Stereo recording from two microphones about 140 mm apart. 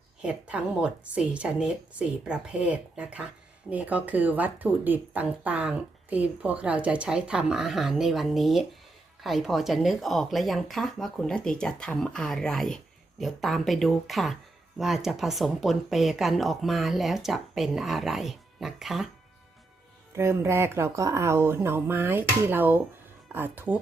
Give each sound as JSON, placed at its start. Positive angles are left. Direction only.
{"t": 0.2, "sound": "speech", "side_deg": -10}
{"t": 20.1, "sound": "speech", "side_deg": -20}